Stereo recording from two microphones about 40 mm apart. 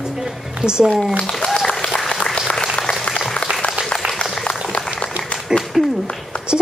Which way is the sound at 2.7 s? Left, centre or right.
Left.